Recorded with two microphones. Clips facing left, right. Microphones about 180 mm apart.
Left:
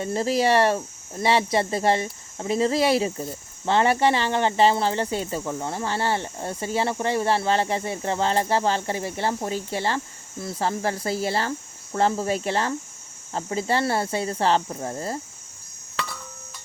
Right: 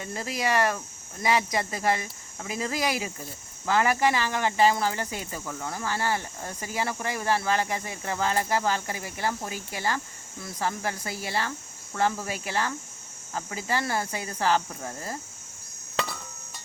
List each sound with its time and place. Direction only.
0.0 s speech: 35° left (ahead or behind)